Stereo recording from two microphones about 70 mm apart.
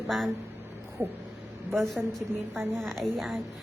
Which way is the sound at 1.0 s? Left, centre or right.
Right.